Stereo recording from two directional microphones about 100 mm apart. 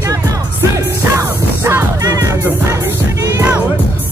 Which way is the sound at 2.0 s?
40° right (ahead or behind).